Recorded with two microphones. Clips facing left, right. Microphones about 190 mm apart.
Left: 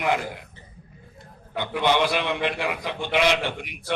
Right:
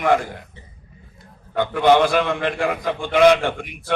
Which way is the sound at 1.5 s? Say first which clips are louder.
Right 7 dB; 50° right (ahead or behind).